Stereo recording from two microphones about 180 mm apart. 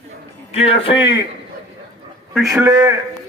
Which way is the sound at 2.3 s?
Centre (ahead or behind).